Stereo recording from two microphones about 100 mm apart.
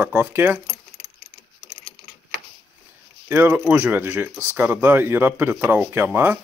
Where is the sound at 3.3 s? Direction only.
20° right (ahead or behind).